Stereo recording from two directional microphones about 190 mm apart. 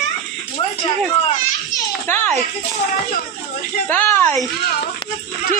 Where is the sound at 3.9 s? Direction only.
10° left (ahead or behind).